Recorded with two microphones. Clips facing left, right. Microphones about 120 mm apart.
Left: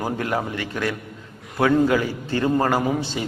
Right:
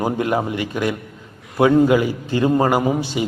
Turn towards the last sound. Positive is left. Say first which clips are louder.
# right 4 dB
turn(degrees=-15)  # may be behind; listen again after turning